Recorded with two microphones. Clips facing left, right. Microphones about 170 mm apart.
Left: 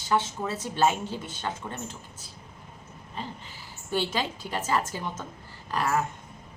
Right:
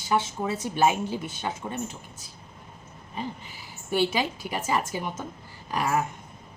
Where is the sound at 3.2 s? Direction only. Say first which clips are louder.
Right 4 dB; 15° right (ahead or behind).